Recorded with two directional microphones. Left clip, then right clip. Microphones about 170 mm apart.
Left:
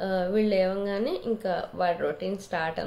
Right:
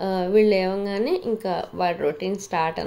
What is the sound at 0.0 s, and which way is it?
Speech, 35° right (ahead or behind).